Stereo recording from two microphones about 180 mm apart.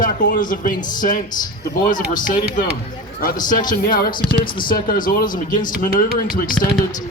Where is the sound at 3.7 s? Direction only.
50° left (ahead or behind).